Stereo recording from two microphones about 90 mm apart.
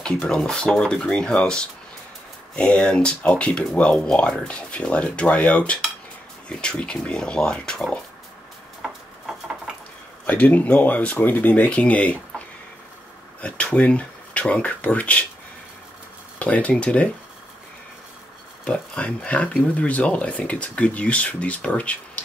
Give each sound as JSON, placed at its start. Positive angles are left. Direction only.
{"t": 0.0, "sound": "speech", "side_deg": 10}
{"t": 10.2, "sound": "speech", "side_deg": 20}
{"t": 13.4, "sound": "speech", "side_deg": 15}
{"t": 16.3, "sound": "speech", "side_deg": 15}
{"t": 18.6, "sound": "speech", "side_deg": 15}